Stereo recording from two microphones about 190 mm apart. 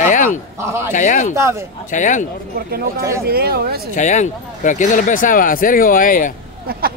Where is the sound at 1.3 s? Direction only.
15° right (ahead or behind).